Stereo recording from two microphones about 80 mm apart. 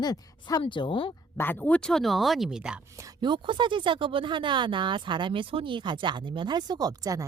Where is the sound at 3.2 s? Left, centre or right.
Right.